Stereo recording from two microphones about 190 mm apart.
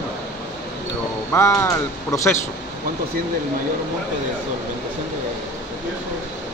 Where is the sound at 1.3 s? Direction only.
15° left (ahead or behind).